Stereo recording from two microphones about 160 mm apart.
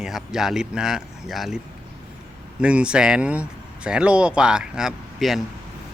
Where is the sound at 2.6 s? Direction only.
5° right (ahead or behind).